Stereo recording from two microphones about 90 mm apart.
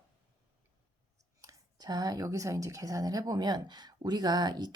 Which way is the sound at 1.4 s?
45° right (ahead or behind).